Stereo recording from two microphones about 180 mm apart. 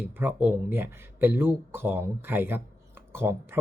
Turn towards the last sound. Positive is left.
turn(degrees=-15)  # may be behind; listen again after turning